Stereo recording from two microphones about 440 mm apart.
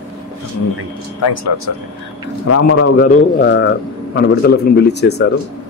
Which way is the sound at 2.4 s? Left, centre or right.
Left.